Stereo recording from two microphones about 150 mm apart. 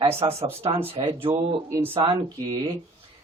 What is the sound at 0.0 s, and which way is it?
Speech, 40° right (ahead or behind).